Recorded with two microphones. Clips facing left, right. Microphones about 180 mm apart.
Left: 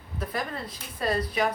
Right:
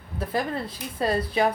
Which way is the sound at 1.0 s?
25° right (ahead or behind).